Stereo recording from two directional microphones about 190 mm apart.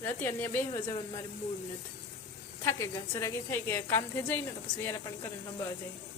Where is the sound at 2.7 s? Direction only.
15° left (ahead or behind).